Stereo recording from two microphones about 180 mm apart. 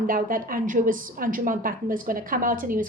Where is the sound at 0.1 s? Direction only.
50° right (ahead or behind).